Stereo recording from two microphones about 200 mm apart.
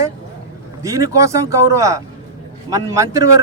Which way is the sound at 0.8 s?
15° right (ahead or behind).